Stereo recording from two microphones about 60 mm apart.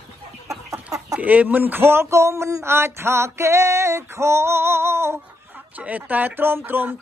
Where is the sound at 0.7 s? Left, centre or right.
Right.